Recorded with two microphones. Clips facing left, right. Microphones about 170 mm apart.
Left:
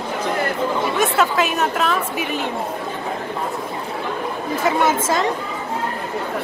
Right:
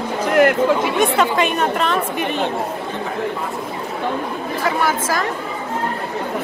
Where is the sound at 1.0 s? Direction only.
5° left (ahead or behind).